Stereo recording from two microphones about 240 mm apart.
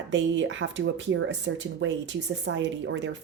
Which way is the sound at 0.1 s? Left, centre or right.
Right.